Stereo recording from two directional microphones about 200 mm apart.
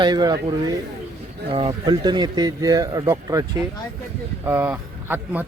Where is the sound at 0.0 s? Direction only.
20° right (ahead or behind).